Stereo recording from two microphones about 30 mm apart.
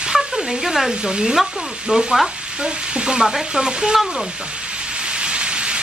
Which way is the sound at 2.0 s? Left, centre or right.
Centre.